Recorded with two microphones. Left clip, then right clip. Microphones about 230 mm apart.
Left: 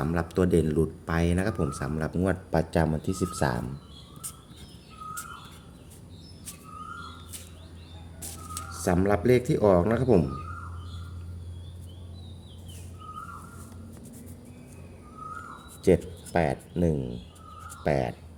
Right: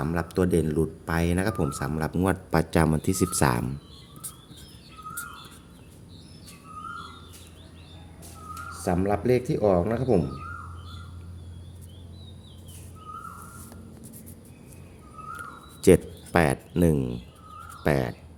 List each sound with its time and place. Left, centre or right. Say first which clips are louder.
0.0 s speech: even; centre; by 3.7 s right
8.7 s speech: left 1 dB; centre
15.8 s speech: right 4 dB; right